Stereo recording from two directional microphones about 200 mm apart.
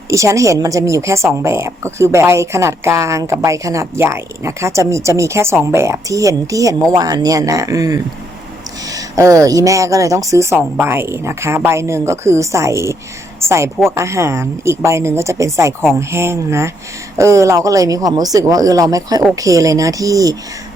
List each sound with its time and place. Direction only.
0.1 s a woman's voice: 15° right (ahead or behind)